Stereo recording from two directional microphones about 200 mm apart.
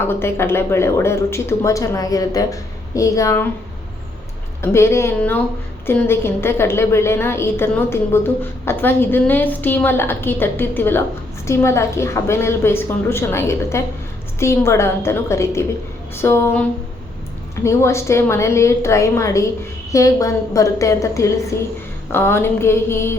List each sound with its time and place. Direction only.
0.0 s speech: 10° left (ahead or behind)
4.6 s speech: 15° left (ahead or behind)